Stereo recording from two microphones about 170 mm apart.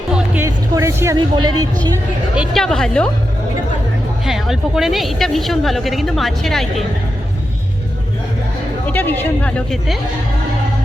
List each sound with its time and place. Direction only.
0.3 s music: 15° right (ahead or behind)
2.3 s speech: centre (ahead or behind)
4.3 s speech: centre (ahead or behind)
8.9 s speech: 10° left (ahead or behind)